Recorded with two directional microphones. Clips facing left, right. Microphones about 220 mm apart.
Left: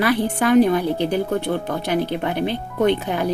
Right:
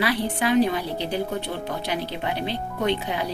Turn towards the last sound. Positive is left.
turn(degrees=50)  # may be behind; listen again after turning